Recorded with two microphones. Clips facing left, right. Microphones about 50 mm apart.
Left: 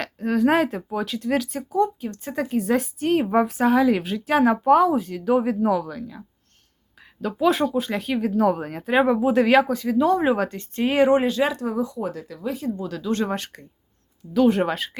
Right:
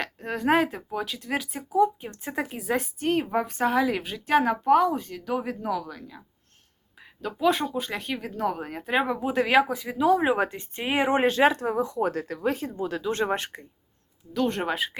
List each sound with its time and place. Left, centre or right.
0.0 s speech: centre
2.0 s speech: right
2.6 s speech: centre
11.2 s speech: right
12.7 s speech: right
14.3 s speech: centre